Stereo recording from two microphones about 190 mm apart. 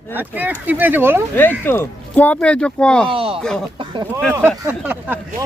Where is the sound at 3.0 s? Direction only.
30° right (ahead or behind).